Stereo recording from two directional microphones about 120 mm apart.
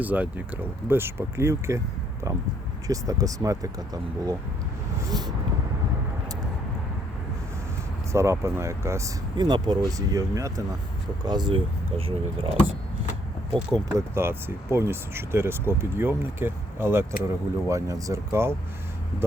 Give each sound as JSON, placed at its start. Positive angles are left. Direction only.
{"t": 0.0, "sound": "speech", "side_deg": -15}
{"t": 2.8, "sound": "speech", "side_deg": -30}
{"t": 8.1, "sound": "speech", "side_deg": -25}
{"t": 9.4, "sound": "speech", "side_deg": -35}
{"t": 13.5, "sound": "speech", "side_deg": -35}
{"t": 14.1, "sound": "speech", "side_deg": -20}